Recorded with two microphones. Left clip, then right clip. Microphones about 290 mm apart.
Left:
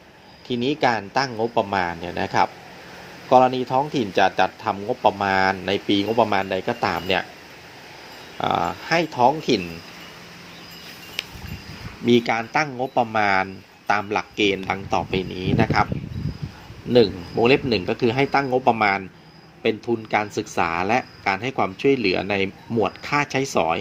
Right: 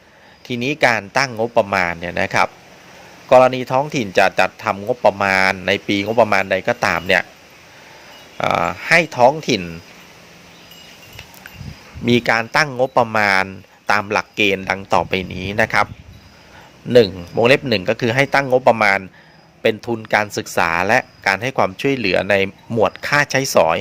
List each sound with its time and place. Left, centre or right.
0.4 s speech: right
8.4 s speech: right
12.0 s speech: right
16.9 s speech: right